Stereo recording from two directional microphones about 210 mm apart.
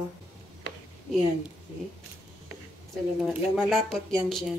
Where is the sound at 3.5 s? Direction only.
Centre (ahead or behind).